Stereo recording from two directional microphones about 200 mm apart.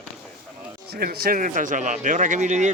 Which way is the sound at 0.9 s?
50° right (ahead or behind).